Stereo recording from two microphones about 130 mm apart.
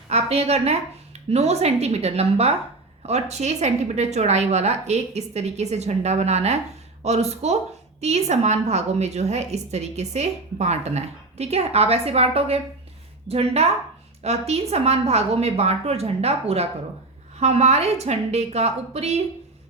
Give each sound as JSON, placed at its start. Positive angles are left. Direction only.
{"t": 0.1, "sound": "a woman's voice", "side_deg": -55}